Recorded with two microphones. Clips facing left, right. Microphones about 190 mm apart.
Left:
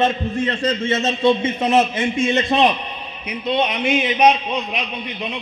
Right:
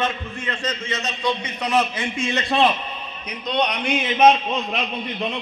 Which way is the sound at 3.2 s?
5° left (ahead or behind).